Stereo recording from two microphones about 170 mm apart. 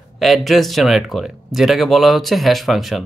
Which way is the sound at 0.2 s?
Centre (ahead or behind).